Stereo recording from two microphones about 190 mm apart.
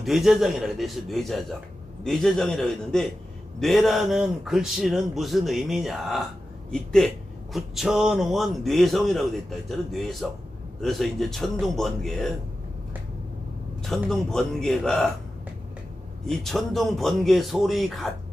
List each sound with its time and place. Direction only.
0.0 s a man's voice: centre (ahead or behind)
13.8 s a man's voice: centre (ahead or behind)
16.3 s a man's voice: centre (ahead or behind)